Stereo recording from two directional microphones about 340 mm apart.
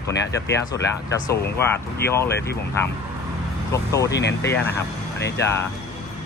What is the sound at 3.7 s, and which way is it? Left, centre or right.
Speech, centre.